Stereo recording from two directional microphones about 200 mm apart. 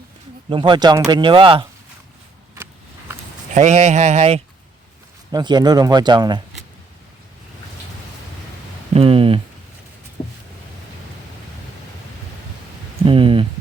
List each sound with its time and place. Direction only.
0.5 s speech: 25° right (ahead or behind)
3.5 s speech: 35° right (ahead or behind)
5.3 s speech: 20° right (ahead or behind)
9.0 s speech: 30° right (ahead or behind)
13.1 s a sound: 25° right (ahead or behind)